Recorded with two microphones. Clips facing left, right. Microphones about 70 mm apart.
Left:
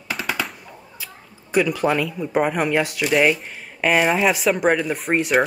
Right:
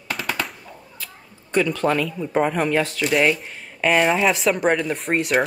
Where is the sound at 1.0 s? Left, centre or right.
Centre.